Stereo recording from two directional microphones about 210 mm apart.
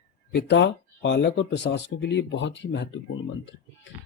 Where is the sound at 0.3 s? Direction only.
55° left (ahead or behind).